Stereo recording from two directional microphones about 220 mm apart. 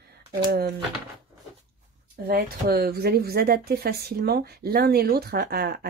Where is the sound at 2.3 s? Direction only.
45° right (ahead or behind).